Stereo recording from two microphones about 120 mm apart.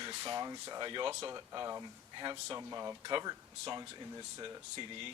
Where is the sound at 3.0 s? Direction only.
35° right (ahead or behind).